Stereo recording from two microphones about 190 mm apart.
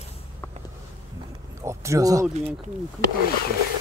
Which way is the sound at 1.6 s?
15° right (ahead or behind).